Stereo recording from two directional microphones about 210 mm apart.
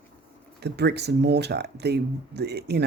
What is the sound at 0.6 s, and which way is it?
Speech, 50° right (ahead or behind).